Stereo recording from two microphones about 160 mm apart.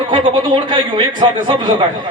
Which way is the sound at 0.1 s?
30° right (ahead or behind).